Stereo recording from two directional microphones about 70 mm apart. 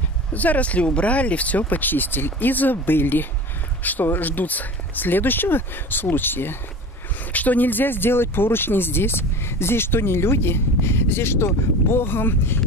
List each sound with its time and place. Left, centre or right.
0.3 s speech: left